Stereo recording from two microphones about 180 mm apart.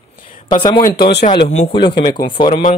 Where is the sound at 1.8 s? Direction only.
25° left (ahead or behind).